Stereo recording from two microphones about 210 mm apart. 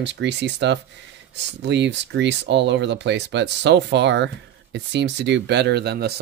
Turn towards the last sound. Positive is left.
turn(degrees=-50)  # may be behind; listen again after turning